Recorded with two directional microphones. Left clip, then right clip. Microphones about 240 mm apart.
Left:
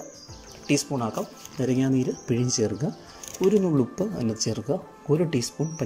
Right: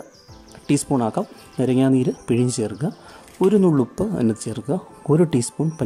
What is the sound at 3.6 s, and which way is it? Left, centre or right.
Speech, centre.